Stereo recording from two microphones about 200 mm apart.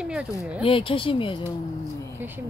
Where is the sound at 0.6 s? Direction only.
25° left (ahead or behind).